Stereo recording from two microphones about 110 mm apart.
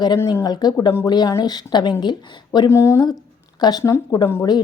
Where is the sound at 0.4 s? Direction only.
40° left (ahead or behind).